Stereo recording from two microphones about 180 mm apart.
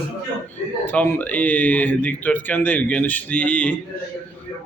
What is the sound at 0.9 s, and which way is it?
Speech, 10° left (ahead or behind).